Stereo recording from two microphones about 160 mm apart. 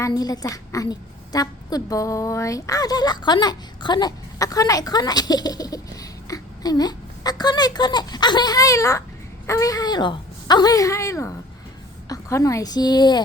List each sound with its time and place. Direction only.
0.0 s a woman's voice: 25° left (ahead or behind)